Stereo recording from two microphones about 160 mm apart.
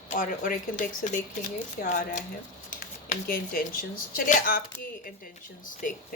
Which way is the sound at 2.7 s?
60° left (ahead or behind).